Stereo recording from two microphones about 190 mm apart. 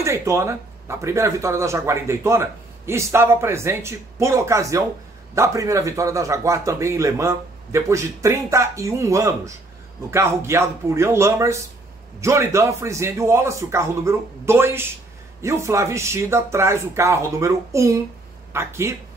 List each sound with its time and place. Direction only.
0.0 s speech: 15° right (ahead or behind)